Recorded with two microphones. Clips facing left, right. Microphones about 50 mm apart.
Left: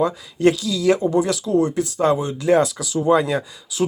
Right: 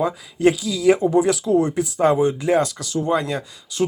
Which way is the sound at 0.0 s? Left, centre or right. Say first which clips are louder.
Left 1 dB; centre.